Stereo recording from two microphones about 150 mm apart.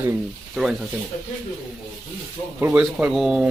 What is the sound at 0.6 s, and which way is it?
Speech, centre (ahead or behind).